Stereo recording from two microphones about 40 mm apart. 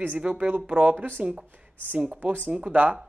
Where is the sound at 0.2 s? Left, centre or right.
Right.